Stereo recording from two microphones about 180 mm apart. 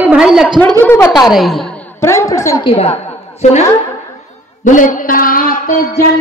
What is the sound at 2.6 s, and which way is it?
A woman's voice, 35° left (ahead or behind).